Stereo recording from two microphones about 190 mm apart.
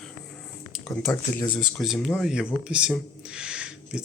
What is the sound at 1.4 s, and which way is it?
Speech, centre (ahead or behind).